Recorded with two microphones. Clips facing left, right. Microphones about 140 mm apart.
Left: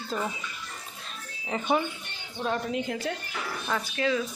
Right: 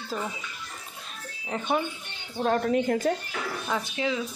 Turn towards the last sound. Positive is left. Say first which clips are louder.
# left 1 dB
turn(degrees=-15)  # may be behind; listen again after turning